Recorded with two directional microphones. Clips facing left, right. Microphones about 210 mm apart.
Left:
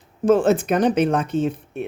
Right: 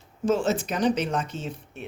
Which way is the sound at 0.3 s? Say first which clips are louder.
Left 8 dB; 55° left (ahead or behind).